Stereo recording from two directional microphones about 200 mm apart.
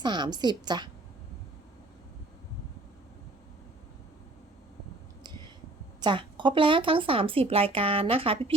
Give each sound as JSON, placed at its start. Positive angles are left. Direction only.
{"t": 0.0, "sound": "speech", "side_deg": -20}
{"t": 6.0, "sound": "speech", "side_deg": -25}